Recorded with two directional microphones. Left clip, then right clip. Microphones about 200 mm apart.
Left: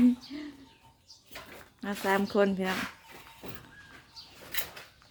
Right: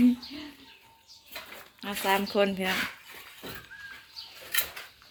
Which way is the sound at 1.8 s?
25° left (ahead or behind).